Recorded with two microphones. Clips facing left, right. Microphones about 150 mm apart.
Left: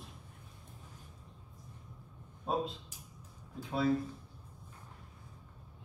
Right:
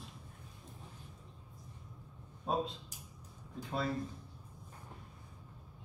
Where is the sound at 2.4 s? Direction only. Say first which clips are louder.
Left 1 dB; centre (ahead or behind).